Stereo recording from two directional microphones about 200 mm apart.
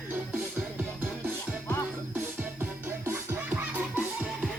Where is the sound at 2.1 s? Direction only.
10° right (ahead or behind).